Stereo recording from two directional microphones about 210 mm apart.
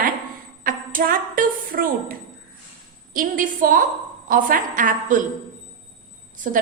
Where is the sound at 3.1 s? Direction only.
40° right (ahead or behind).